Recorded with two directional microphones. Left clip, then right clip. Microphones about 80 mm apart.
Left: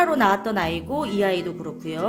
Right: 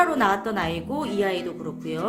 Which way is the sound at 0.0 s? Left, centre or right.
Left.